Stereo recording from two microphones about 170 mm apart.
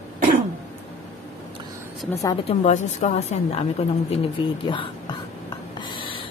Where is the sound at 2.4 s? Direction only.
45° left (ahead or behind).